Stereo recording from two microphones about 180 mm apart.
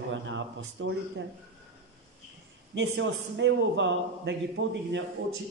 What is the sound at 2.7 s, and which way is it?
A man's voice, 80° right.